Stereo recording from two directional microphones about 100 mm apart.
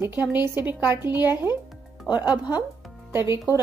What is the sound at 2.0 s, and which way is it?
Speech, 45° left (ahead or behind).